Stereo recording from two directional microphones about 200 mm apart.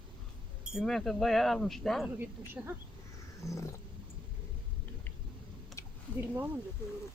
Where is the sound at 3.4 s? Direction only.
15° left (ahead or behind).